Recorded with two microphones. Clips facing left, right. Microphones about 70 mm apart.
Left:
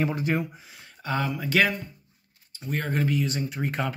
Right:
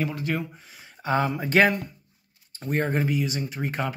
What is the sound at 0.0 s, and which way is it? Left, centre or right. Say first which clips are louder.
Speech: left 2 dB; left.